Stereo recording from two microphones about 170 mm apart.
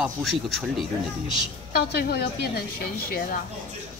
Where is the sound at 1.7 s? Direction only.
70° left (ahead or behind).